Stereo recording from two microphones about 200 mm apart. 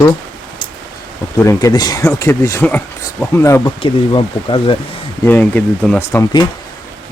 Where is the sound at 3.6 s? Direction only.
25° left (ahead or behind).